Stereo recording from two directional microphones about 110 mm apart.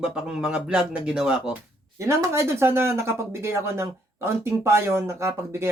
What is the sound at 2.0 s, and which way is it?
Speech, 25° right (ahead or behind).